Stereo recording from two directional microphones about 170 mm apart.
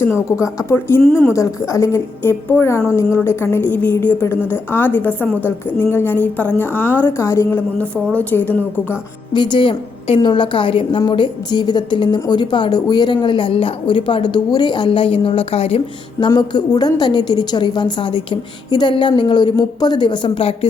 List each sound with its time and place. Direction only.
0.0 s a woman's voice: 15° left (ahead or behind)
9.3 s a woman's voice: 25° left (ahead or behind)